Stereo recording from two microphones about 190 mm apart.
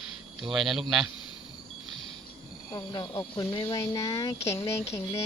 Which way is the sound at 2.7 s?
20° left (ahead or behind).